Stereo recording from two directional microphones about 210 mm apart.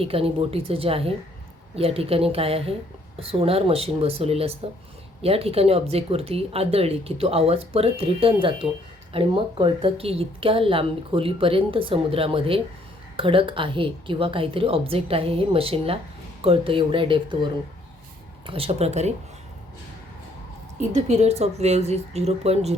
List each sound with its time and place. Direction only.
0.0 s a woman's voice: 25° right (ahead or behind)
20.9 s speech: 30° right (ahead or behind)